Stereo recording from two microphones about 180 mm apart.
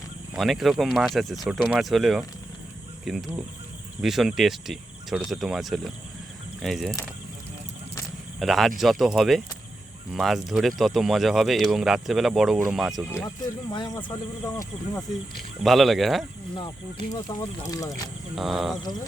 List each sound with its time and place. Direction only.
0.3 s speech: centre (ahead or behind)
8.4 s speech: centre (ahead or behind)
13.1 s speech: 15° left (ahead or behind)
15.4 s speech: centre (ahead or behind)
17.4 s speech: 20° left (ahead or behind)
18.3 s speech: centre (ahead or behind)